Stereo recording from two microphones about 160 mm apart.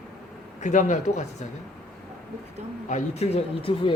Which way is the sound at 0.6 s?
50° left (ahead or behind).